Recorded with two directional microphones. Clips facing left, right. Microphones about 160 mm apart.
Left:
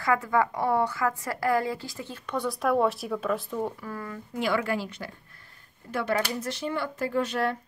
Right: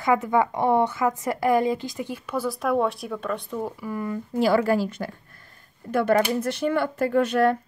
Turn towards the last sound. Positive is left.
turn(degrees=-55)  # may be behind; listen again after turning